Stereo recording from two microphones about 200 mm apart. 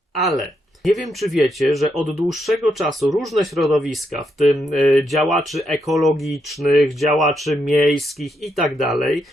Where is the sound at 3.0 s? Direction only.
15° right (ahead or behind).